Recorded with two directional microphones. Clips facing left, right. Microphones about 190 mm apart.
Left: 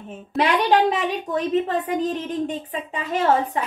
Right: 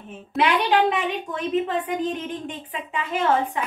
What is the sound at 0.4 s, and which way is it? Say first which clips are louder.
A woman's voice: left 2 dB; 40° left (ahead or behind).